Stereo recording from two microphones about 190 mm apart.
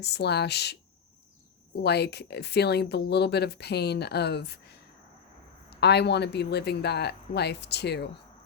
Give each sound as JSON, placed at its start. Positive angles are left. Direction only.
{"t": 0.0, "sound": "speech", "side_deg": 60}